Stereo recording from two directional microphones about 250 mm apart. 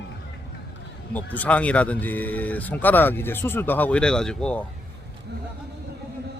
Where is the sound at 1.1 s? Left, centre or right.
Centre.